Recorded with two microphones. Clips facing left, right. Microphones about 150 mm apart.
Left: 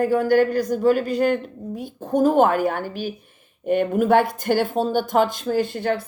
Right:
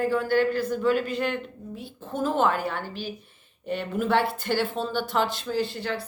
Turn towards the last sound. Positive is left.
turn(degrees=50)  # may be behind; listen again after turning